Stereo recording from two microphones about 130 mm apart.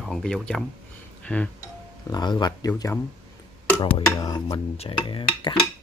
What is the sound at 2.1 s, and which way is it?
Speech, 35° left (ahead or behind).